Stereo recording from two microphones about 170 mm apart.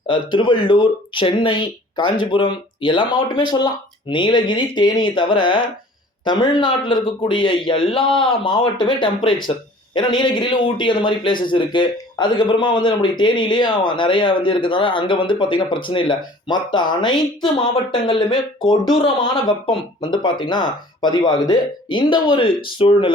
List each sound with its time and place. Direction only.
0.1 s speech: 25° left (ahead or behind)